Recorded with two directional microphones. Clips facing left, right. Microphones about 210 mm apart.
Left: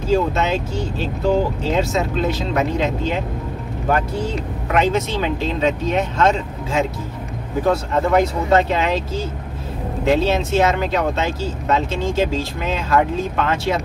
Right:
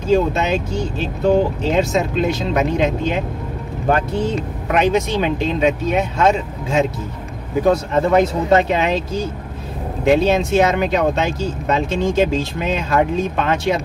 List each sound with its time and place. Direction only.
0.1 s speech: 15° right (ahead or behind)
1.7 s speech: 20° right (ahead or behind)
4.7 s speech: 15° right (ahead or behind)
7.9 s speech: 20° right (ahead or behind)